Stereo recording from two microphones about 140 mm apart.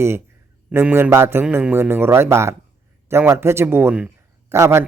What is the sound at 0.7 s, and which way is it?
A man's voice, 15° right (ahead or behind).